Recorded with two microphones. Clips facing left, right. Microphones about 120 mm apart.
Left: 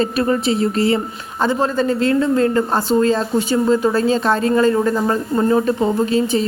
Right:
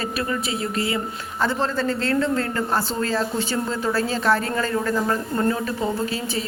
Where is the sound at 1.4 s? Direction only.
15° left (ahead or behind).